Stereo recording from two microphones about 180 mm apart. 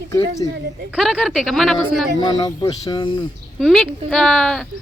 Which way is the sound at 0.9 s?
5° right (ahead or behind).